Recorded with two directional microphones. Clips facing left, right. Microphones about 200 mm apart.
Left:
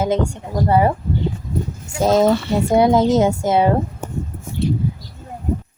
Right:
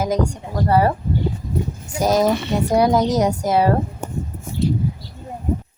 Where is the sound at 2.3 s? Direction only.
20° right (ahead or behind).